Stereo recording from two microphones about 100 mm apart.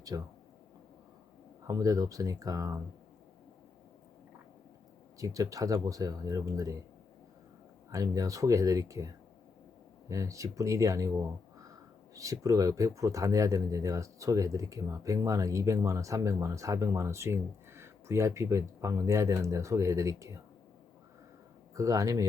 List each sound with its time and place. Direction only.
0.1 s speech: 35° right (ahead or behind)
1.6 s speech: 35° right (ahead or behind)
5.2 s speech: 35° right (ahead or behind)
7.9 s speech: 35° right (ahead or behind)
10.1 s speech: 35° right (ahead or behind)
21.8 s speech: 35° right (ahead or behind)